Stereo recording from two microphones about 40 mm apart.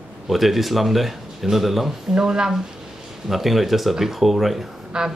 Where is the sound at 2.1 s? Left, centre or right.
Centre.